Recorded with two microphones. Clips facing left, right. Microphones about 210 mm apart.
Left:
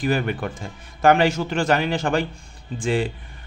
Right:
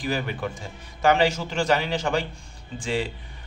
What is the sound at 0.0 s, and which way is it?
A man's voice, 55° left (ahead or behind).